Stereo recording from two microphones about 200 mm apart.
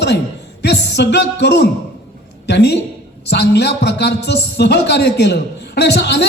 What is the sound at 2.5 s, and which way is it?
A man's voice, 55° left (ahead or behind).